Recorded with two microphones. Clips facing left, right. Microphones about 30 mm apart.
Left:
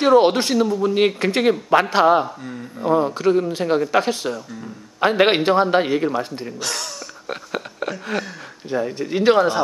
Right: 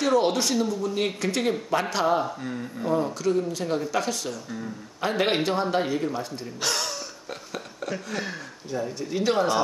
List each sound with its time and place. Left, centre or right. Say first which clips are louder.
0.0 s a man's voice: left 8 dB; left
2.2 s speech: even; centre
2.8 s a man's voice: left 7 dB; left
6.6 s speech: right 1 dB; centre
7.2 s a sound: left 8 dB; left
8.1 s a man's voice: left 5 dB; left